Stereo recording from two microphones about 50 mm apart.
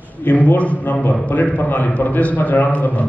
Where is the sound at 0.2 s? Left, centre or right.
Left.